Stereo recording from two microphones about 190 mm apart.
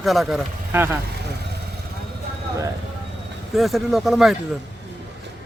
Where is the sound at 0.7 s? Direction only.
10° right (ahead or behind).